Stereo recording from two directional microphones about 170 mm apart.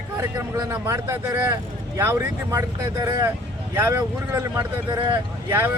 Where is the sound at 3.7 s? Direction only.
15° right (ahead or behind).